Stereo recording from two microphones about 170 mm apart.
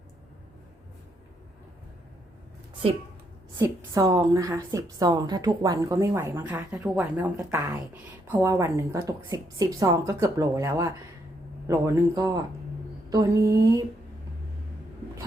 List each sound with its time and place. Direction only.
3.6 s a woman's voice: 20° right (ahead or behind)